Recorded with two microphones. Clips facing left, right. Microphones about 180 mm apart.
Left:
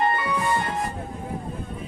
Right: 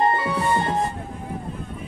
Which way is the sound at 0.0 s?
25° right (ahead or behind).